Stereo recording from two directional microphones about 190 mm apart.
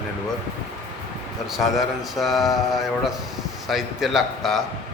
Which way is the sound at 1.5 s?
Centre (ahead or behind).